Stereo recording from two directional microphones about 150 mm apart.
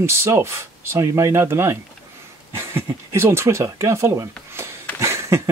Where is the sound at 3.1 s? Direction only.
15° right (ahead or behind).